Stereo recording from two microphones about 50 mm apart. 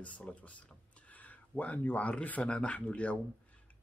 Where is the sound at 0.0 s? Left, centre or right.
Left.